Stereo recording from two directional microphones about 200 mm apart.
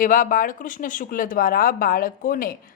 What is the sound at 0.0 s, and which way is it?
Speech, 40° left (ahead or behind).